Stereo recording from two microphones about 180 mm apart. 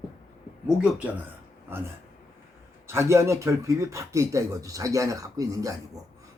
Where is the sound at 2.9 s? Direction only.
15° right (ahead or behind).